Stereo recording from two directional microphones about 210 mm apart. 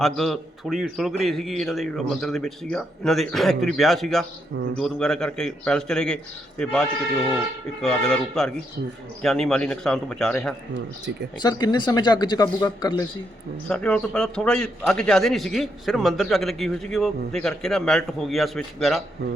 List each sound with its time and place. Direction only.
0.0 s speech: centre (ahead or behind)
11.3 s speech: 20° left (ahead or behind)
13.7 s speech: 5° left (ahead or behind)